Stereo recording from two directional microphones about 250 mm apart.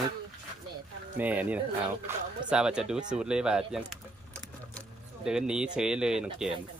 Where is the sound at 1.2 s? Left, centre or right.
Centre.